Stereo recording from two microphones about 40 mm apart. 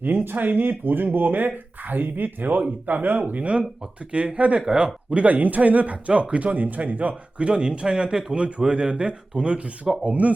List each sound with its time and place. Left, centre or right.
0.0 s speech: right
4.6 s speech: centre
5.1 s a man's voice: right
9.9 s speech: centre